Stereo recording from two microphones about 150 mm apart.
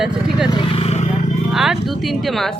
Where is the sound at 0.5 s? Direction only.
40° left (ahead or behind).